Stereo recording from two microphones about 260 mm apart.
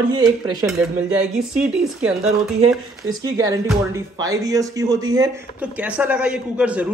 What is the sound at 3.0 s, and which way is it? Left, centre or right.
A man's voice, centre.